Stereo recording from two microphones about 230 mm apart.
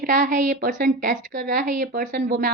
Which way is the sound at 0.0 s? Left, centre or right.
Right.